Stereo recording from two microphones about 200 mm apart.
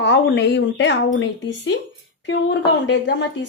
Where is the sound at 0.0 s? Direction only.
60° left (ahead or behind).